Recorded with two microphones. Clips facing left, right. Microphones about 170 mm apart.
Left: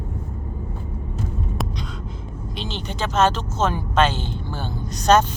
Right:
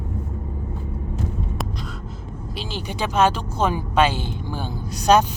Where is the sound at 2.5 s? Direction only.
10° right (ahead or behind).